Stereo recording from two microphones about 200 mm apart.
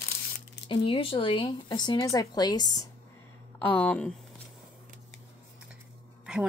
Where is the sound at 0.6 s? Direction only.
25° left (ahead or behind).